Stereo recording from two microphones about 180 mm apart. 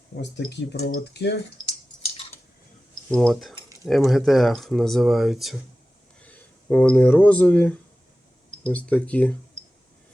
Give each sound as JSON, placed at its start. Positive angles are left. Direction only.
{"t": 0.2, "sound": "speech", "side_deg": 75}
{"t": 1.6, "sound": "a sound", "side_deg": 35}
{"t": 3.1, "sound": "speech", "side_deg": 0}